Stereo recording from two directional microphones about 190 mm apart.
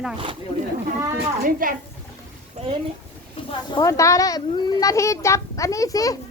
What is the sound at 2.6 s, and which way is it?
Speech, 30° right (ahead or behind).